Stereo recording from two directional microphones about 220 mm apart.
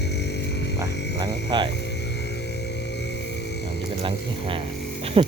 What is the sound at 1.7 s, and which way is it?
Music, 50° left (ahead or behind).